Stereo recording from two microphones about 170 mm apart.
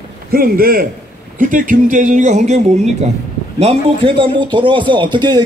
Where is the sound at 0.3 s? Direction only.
60° right (ahead or behind).